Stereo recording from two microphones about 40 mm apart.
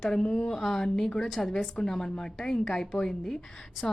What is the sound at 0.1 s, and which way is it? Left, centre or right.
A woman's voice, centre.